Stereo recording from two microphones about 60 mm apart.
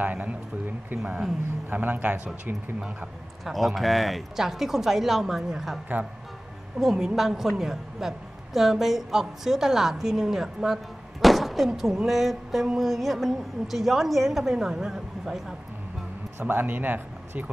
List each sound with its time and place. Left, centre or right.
0.0 s speech: right
1.7 s speech: right
3.4 s a woman's voice: centre
6.8 s a woman's voice: centre
16.3 s speech: right